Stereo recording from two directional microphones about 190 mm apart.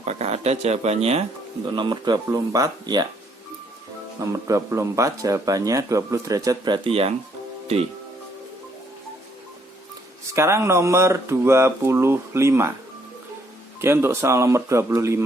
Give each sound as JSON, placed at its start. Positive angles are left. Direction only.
{"t": 0.0, "sound": "speech", "side_deg": -35}
{"t": 1.7, "sound": "speech", "side_deg": -25}
{"t": 4.2, "sound": "speech", "side_deg": -15}
{"t": 10.3, "sound": "speech", "side_deg": -15}
{"t": 13.8, "sound": "speech", "side_deg": -15}